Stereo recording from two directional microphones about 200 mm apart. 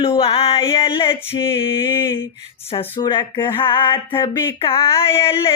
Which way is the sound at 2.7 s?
20° left (ahead or behind).